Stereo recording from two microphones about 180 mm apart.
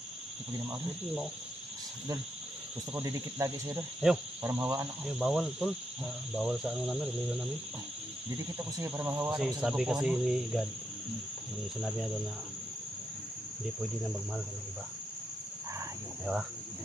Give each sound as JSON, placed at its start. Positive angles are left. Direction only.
{"t": 0.7, "sound": "speech", "side_deg": -5}
{"t": 3.0, "sound": "speech", "side_deg": -15}
{"t": 4.0, "sound": "speech", "side_deg": 0}
{"t": 8.7, "sound": "speech", "side_deg": -10}